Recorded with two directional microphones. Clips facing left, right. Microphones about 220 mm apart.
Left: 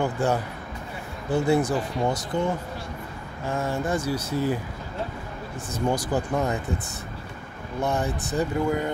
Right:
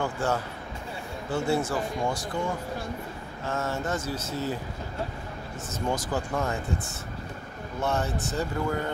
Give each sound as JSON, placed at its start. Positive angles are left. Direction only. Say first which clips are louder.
{"t": 0.0, "sound": "speech", "louder": "left 4 dB", "side_deg": 15}
{"t": 3.4, "sound": "speech", "louder": "left 3 dB", "side_deg": 15}
{"t": 5.7, "sound": "speech", "louder": "left 4 dB", "side_deg": 15}
{"t": 7.8, "sound": "speech", "louder": "left 2 dB", "side_deg": 15}